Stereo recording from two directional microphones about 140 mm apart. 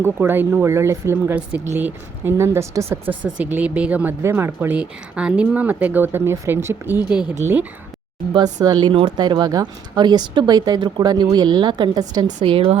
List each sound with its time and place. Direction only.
0.0 s speech: 15° right (ahead or behind)
8.6 s speech: 30° right (ahead or behind)